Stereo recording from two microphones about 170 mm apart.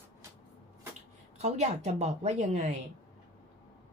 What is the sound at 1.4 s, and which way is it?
Speech, 40° right (ahead or behind).